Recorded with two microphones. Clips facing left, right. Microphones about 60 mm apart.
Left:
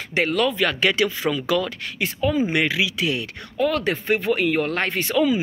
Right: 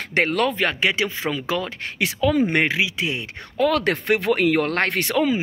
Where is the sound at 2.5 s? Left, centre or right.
Right.